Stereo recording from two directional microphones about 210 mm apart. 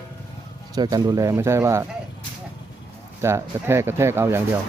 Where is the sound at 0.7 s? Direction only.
20° right (ahead or behind).